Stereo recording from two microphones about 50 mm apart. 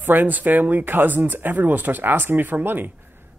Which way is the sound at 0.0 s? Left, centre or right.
Right.